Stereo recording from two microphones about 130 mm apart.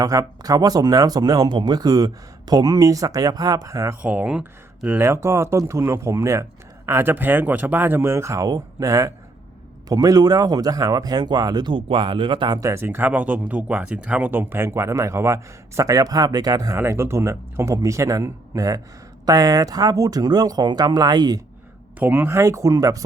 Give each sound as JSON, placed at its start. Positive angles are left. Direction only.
{"t": 0.0, "sound": "speech", "side_deg": -30}
{"t": 4.0, "sound": "speech", "side_deg": -10}
{"t": 5.0, "sound": "speech", "side_deg": -20}
{"t": 21.9, "sound": "speech", "side_deg": -15}